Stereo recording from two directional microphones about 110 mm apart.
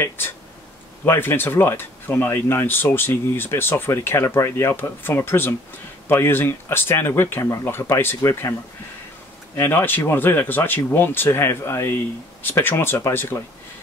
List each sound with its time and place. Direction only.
1.0 s speech: 20° left (ahead or behind)
9.6 s speech: 20° left (ahead or behind)